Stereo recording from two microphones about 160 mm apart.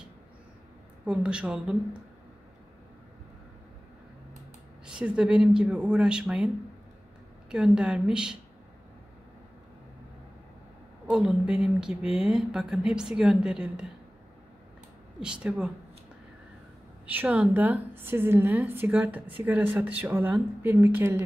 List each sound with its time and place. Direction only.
1.0 s speech: 5° right (ahead or behind)
4.8 s speech: 5° right (ahead or behind)
7.5 s speech: 5° right (ahead or behind)
11.1 s speech: 5° right (ahead or behind)
15.1 s speech: 5° right (ahead or behind)
17.0 s a woman's voice: 10° right (ahead or behind)